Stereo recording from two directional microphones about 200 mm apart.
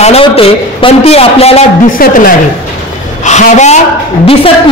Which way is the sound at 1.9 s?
45° left (ahead or behind).